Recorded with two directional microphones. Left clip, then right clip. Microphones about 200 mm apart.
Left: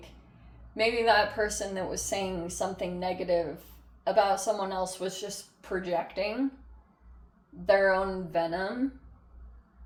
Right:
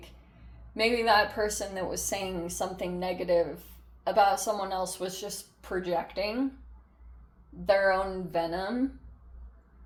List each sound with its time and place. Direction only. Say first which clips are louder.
0.7 s a woman's voice: even; 25° right (ahead or behind)
7.6 s a woman's voice: left 1 dB; 25° right (ahead or behind)